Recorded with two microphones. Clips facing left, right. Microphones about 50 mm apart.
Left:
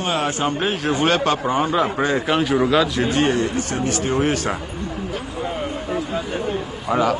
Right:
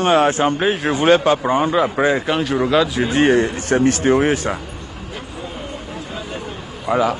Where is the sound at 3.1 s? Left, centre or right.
Right.